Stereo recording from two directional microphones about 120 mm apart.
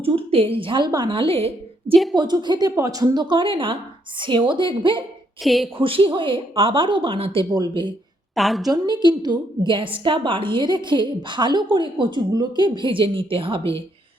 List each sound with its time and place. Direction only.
0.0 s speech: 50° right (ahead or behind)
2.1 s a woman's voice: 35° right (ahead or behind)
5.4 s a woman's voice: centre (ahead or behind)
5.7 s a woman's voice: 50° right (ahead or behind)
8.4 s a woman's voice: centre (ahead or behind)
8.7 s a woman's voice: 35° right (ahead or behind)